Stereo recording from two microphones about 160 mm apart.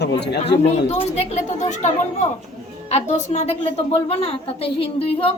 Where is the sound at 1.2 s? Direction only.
45° left (ahead or behind).